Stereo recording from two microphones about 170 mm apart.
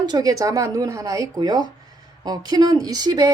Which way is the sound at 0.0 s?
25° right (ahead or behind).